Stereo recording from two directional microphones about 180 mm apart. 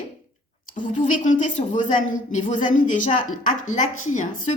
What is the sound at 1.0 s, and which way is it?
A woman's voice, 45° left (ahead or behind).